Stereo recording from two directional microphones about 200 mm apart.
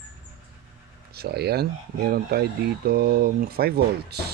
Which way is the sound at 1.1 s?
55° right (ahead or behind).